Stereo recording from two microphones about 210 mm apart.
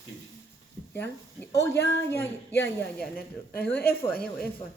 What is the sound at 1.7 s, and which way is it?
Speech, 50° left (ahead or behind).